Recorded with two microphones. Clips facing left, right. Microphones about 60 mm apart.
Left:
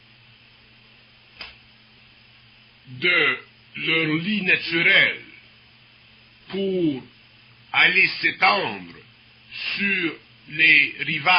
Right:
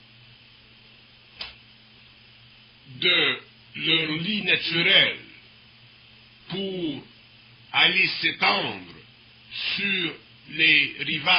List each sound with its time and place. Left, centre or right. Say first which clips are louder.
1.4 s tick-tock: even; left
3.0 s a man's voice: left 4 dB; left
6.5 s a man's voice: left 7 dB; left